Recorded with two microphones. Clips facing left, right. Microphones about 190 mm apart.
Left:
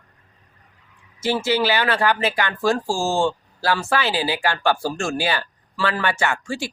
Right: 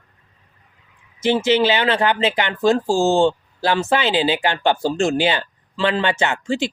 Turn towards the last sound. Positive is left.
turn(degrees=-20)  # may be behind; listen again after turning